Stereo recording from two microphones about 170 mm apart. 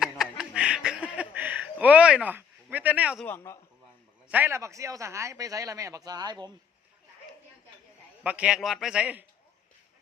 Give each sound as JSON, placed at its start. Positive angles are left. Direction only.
{"t": 0.0, "sound": "snicker", "side_deg": -5}
{"t": 3.2, "sound": "a man's voice", "side_deg": 15}
{"t": 4.3, "sound": "a man's voice", "side_deg": -10}
{"t": 8.2, "sound": "a man's voice", "side_deg": -10}